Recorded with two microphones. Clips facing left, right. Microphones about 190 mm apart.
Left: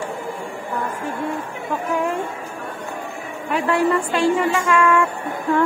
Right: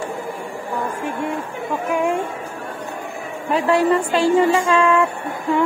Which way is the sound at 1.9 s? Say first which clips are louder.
Right 3 dB; 25° right (ahead or behind).